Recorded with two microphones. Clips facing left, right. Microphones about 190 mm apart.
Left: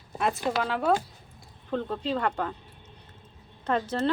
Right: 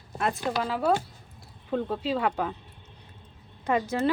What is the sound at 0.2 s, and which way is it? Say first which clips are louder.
Speech: left 1 dB; centre (ahead or behind).